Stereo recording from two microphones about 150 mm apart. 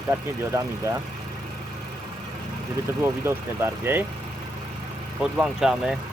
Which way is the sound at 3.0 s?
15° right (ahead or behind).